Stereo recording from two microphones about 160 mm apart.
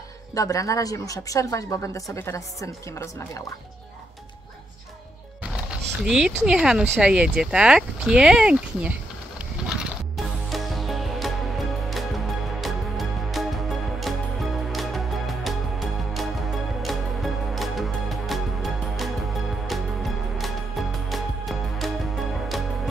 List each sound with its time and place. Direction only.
0.3 s speech: 20° left (ahead or behind)
5.7 s speech: 5° right (ahead or behind)
9.7 s music: 5° right (ahead or behind)